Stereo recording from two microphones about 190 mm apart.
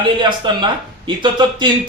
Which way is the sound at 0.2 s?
25° right (ahead or behind).